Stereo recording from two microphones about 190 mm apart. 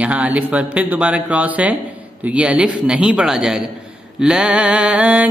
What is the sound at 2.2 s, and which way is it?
A man's voice, 5° right (ahead or behind).